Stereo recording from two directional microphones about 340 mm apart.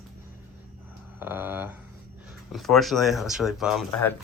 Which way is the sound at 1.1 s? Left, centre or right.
Centre.